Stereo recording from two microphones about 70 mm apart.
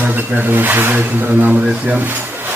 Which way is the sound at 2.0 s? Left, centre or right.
Right.